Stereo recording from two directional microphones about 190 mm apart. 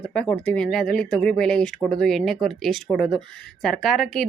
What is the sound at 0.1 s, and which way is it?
Speech, 5° left (ahead or behind).